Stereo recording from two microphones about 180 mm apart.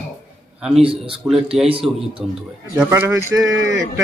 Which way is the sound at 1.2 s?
Centre (ahead or behind).